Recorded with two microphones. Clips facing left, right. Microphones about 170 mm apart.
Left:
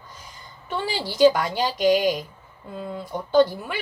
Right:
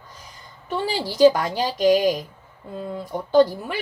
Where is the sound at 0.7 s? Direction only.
40° right (ahead or behind).